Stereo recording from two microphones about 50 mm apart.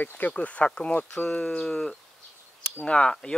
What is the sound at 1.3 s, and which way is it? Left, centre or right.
Speech, centre.